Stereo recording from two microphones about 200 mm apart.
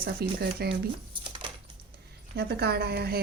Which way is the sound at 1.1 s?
25° right (ahead or behind).